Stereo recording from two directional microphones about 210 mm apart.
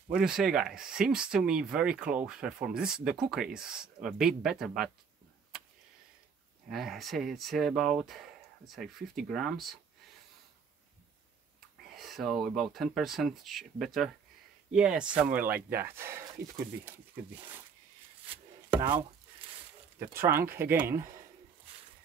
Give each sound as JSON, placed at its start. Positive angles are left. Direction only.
{"t": 0.1, "sound": "speech", "side_deg": -5}
{"t": 6.7, "sound": "speech", "side_deg": 0}
{"t": 11.9, "sound": "speech", "side_deg": 0}
{"t": 18.3, "sound": "chopping", "side_deg": -25}
{"t": 20.2, "sound": "speech", "side_deg": -10}